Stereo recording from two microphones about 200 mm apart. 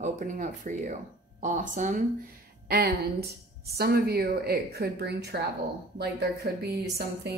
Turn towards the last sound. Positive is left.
turn(degrees=-55)  # may be behind; listen again after turning